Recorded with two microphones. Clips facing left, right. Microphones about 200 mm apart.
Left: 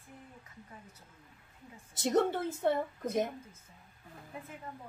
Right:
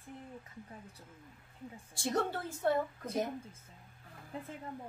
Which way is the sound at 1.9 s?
20° left (ahead or behind).